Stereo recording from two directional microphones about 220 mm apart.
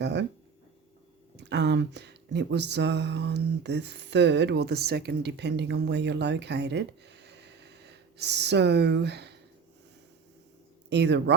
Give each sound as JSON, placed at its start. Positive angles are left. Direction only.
{"t": 0.0, "sound": "speech", "side_deg": -50}
{"t": 1.4, "sound": "speech", "side_deg": -50}
{"t": 10.8, "sound": "speech", "side_deg": -50}